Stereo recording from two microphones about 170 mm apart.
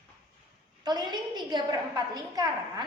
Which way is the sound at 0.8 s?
25° right (ahead or behind).